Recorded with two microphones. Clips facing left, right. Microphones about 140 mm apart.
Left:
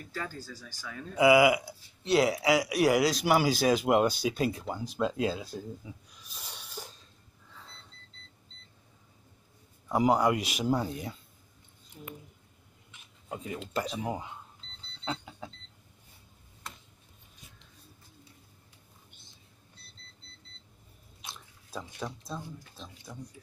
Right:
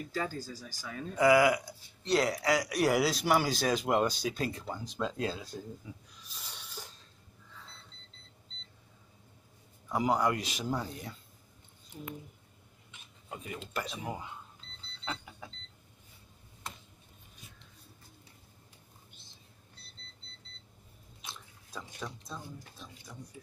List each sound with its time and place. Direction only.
0.1 s speech: 15° right (ahead or behind)
1.1 s speech: 10° left (ahead or behind)
5.9 s snort: 15° left (ahead or behind)
10.0 s speech: 15° left (ahead or behind)
13.3 s speech: 25° left (ahead or behind)
15.0 s alarm clock: 20° left (ahead or behind)
22.3 s speech: 25° left (ahead or behind)